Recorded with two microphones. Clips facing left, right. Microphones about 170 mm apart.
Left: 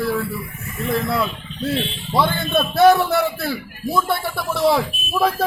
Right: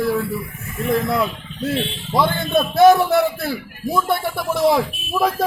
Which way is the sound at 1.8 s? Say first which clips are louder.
Right 1 dB; 15° right (ahead or behind).